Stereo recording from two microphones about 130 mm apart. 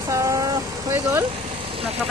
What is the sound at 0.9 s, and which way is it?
Speech, 20° right (ahead or behind).